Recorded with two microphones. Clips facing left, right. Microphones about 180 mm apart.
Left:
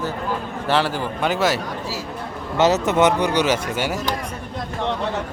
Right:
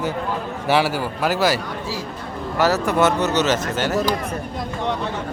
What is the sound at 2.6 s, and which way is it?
A man's voice, 20° left (ahead or behind).